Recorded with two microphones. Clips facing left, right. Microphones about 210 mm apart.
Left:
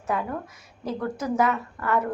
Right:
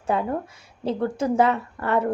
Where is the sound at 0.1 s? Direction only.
30° right (ahead or behind).